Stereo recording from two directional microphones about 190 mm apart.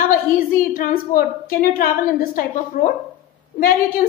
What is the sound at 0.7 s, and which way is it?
A woman's voice, 50° left (ahead or behind).